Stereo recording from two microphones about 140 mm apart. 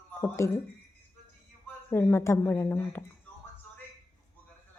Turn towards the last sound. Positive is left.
turn(degrees=15)  # may be behind; listen again after turning